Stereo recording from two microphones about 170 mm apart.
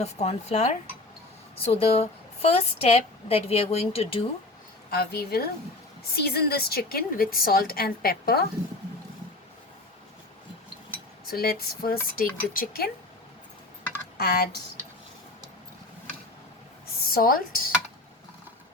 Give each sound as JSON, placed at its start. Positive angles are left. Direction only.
{"t": 0.0, "sound": "a woman's voice", "side_deg": 40}
{"t": 4.9, "sound": "a woman's voice", "side_deg": 65}
{"t": 11.3, "sound": "a woman's voice", "side_deg": 65}
{"t": 14.2, "sound": "a woman's voice", "side_deg": 70}
{"t": 17.0, "sound": "speech", "side_deg": 60}